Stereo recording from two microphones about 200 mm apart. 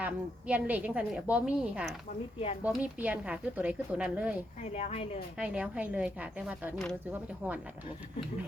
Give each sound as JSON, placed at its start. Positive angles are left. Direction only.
{"t": 0.0, "sound": "a woman's voice", "side_deg": -10}
{"t": 4.6, "sound": "speech", "side_deg": 30}
{"t": 5.4, "sound": "a woman's voice", "side_deg": -5}